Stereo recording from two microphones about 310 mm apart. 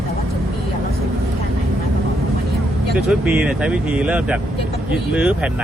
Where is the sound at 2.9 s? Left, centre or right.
Centre.